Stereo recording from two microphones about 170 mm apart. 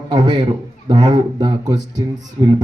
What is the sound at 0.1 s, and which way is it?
Speech, 25° right (ahead or behind).